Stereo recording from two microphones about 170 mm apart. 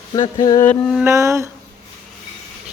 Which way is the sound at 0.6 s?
5° left (ahead or behind).